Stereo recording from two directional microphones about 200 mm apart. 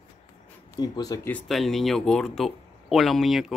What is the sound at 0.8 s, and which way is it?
Speech, 20° left (ahead or behind).